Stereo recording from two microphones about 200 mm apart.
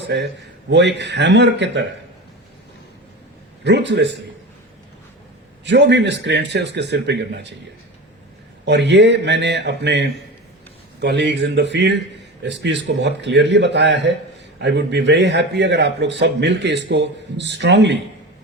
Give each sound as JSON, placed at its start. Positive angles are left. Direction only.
{"t": 0.0, "sound": "a man's voice", "side_deg": -60}
{"t": 3.6, "sound": "a man's voice", "side_deg": -60}
{"t": 5.6, "sound": "a man's voice", "side_deg": -60}
{"t": 8.6, "sound": "a man's voice", "side_deg": -60}